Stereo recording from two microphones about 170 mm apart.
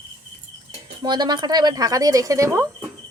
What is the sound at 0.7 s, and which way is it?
Speech, 25° right (ahead or behind).